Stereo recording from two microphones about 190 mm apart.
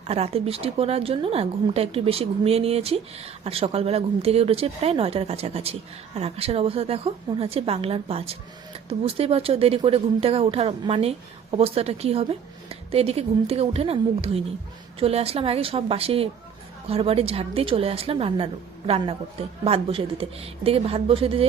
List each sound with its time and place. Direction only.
0.1 s a woman's voice: 30° right (ahead or behind)